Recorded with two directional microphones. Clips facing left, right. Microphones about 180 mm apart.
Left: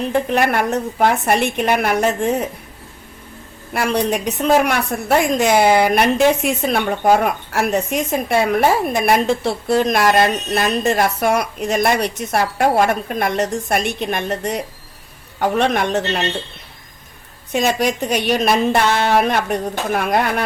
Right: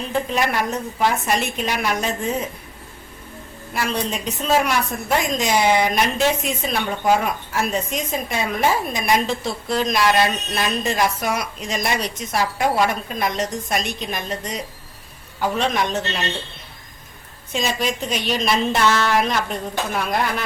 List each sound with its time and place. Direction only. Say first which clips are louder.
0.3 s a woman's voice: left 5 dB; 60° left (ahead or behind)
3.8 s a woman's voice: left 6 dB; 60° left (ahead or behind)
7.5 s a woman's voice: left 4 dB; 65° left (ahead or behind)
9.8 s a woman's voice: left 1 dB; 50° left (ahead or behind)
17.5 s a woman's voice: left 6 dB; 60° left (ahead or behind)